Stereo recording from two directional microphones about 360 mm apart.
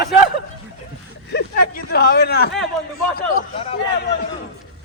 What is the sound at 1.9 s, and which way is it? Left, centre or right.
Speech, left.